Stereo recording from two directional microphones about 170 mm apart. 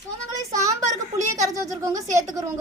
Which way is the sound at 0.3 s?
20° right (ahead or behind).